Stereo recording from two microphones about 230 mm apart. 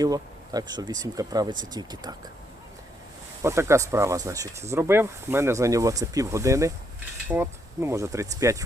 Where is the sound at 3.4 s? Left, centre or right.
Centre.